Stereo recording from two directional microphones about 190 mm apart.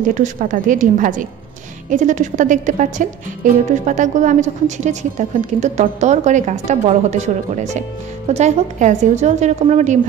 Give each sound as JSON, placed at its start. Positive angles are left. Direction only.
{"t": 0.0, "sound": "a woman's voice", "side_deg": -45}